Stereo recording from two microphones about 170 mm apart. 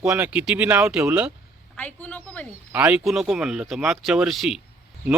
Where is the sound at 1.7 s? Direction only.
10° left (ahead or behind).